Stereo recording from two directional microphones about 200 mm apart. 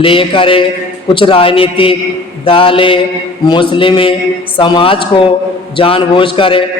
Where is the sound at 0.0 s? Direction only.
25° left (ahead or behind).